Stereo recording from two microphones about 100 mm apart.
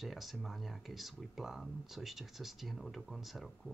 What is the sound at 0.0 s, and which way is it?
Speech, centre (ahead or behind).